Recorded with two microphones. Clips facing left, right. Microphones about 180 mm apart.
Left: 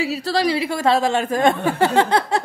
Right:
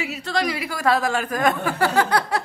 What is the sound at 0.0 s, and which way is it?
A woman's voice, 35° left (ahead or behind).